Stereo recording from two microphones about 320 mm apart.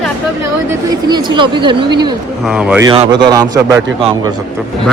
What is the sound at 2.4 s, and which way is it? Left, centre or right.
A man's voice, centre.